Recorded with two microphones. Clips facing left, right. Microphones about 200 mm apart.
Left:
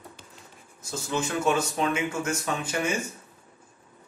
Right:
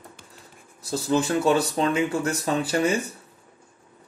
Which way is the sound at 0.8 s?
35° right (ahead or behind).